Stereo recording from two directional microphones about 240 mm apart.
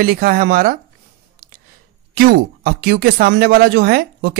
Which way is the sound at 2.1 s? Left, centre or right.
Right.